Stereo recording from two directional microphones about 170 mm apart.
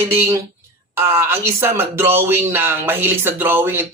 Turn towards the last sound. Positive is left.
turn(degrees=-15)  # may be behind; listen again after turning